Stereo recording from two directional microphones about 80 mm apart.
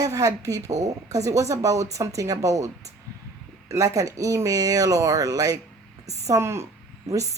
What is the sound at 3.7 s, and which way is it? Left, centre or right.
A woman's voice, right.